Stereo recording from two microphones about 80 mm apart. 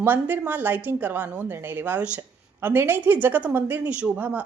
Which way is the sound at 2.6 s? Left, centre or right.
Right.